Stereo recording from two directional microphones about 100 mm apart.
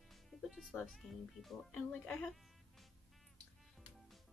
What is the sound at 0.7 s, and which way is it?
Speech, centre (ahead or behind).